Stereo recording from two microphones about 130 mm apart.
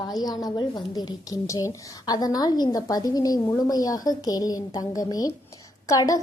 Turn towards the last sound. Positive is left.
turn(degrees=25)  # may be behind; listen again after turning